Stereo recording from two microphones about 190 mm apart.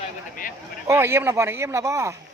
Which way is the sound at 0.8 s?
15° right (ahead or behind).